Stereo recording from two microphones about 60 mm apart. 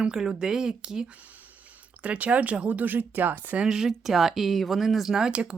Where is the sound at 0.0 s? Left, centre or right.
Centre.